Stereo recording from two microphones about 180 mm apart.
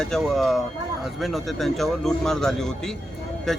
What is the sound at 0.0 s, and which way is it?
Speech, centre (ahead or behind).